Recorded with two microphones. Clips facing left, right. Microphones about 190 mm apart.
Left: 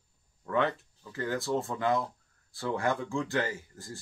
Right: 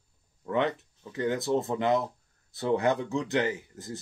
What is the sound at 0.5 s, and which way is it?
Speech, 20° right (ahead or behind).